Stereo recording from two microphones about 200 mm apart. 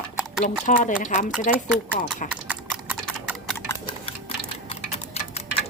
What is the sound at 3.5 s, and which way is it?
Tick-tock, 15° left (ahead or behind).